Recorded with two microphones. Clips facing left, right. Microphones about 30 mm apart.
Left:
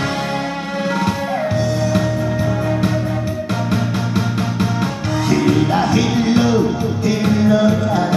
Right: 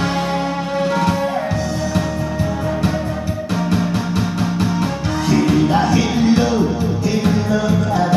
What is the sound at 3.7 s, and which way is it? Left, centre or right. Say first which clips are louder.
Music: right 1 dB; centre.